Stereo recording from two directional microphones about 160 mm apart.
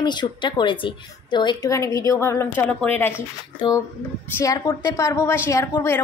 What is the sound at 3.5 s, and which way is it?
A woman's voice, 25° left (ahead or behind).